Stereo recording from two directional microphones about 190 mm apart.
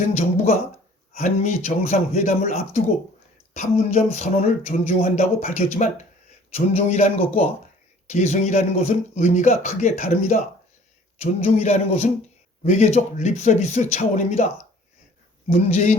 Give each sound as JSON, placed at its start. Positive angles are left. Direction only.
{"t": 0.2, "sound": "speech", "side_deg": 35}